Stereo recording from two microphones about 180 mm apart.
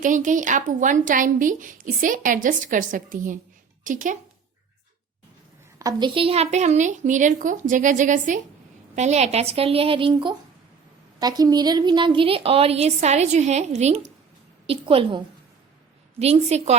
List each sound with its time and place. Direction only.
0.0 s a woman's voice: 45° right (ahead or behind)
5.8 s a woman's voice: 25° right (ahead or behind)